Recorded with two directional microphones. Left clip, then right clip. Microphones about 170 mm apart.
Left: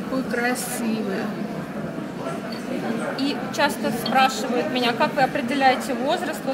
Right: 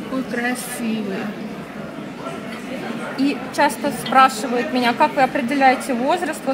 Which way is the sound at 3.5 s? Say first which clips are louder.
Right 4 dB; 20° right (ahead or behind).